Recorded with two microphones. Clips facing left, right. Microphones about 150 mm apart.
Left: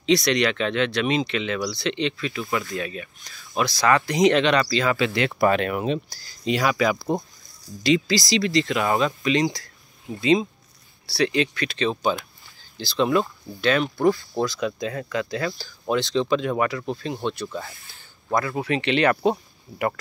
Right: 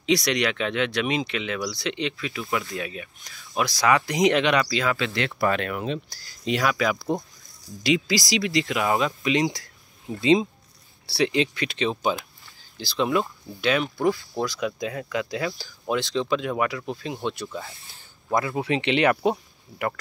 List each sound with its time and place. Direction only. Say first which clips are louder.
0.0 s speech: left 3 dB; 10° right (ahead or behind)
4.9 s speech: left 4 dB; 10° left (ahead or behind)
6.0 s speech: left 2 dB; centre (ahead or behind)
7.8 s speech: left 2 dB; 10° right (ahead or behind)
19.7 s speech: left 4 dB; 10° left (ahead or behind)